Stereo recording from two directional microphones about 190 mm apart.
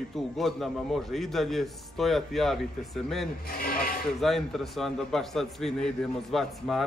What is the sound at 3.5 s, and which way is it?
Speech, 50° left (ahead or behind).